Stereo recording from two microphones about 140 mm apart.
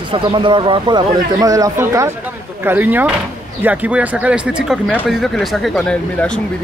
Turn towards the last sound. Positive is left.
turn(degrees=5)  # may be behind; listen again after turning